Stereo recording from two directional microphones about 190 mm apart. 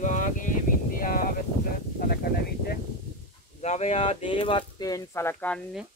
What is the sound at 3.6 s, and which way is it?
Speech, 35° left (ahead or behind).